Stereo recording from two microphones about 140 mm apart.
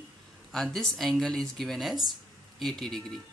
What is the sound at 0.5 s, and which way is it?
Speech, centre (ahead or behind).